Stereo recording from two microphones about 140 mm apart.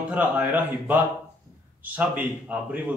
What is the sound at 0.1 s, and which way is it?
A man's voice, 10° right (ahead or behind).